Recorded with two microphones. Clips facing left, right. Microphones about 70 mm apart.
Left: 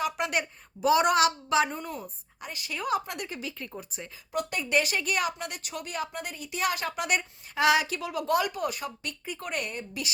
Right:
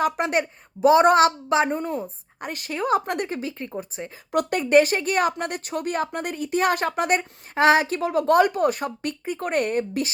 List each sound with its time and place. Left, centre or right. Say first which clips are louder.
0.0 s a woman's voice: right 7 dB; right
2.4 s speech: right 7 dB; right
2.7 s a woman's voice: right 7 dB; right
4.3 s speech: right 9 dB; right